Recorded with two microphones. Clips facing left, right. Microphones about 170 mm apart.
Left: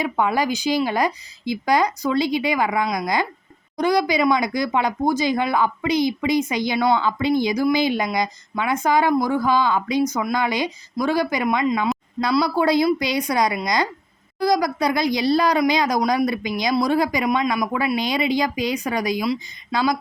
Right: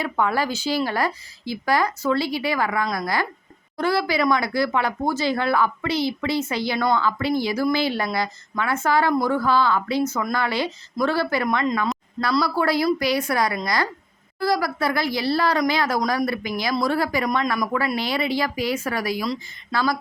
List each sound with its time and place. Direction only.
0.0 s speech: 15° left (ahead or behind)
17.2 s speech: 5° left (ahead or behind)
17.5 s speech: 15° left (ahead or behind)